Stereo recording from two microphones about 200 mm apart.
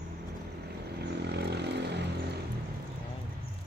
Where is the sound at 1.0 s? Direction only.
55° right (ahead or behind).